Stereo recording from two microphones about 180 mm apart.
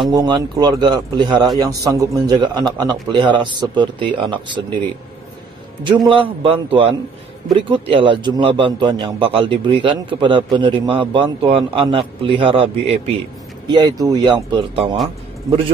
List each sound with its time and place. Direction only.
0.1 s a man's voice: 20° right (ahead or behind)
6.0 s a man's voice: 30° right (ahead or behind)